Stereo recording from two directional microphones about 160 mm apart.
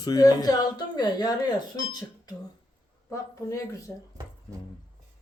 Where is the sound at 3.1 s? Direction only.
20° left (ahead or behind).